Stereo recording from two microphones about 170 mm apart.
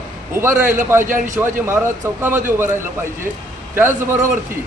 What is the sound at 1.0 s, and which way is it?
Speech, 50° right (ahead or behind).